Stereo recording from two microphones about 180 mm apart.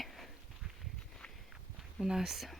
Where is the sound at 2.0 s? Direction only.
Centre (ahead or behind).